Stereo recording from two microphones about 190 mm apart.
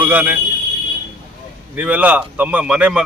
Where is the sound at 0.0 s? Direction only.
10° right (ahead or behind).